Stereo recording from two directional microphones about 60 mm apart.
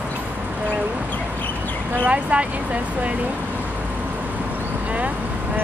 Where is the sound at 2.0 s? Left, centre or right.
Centre.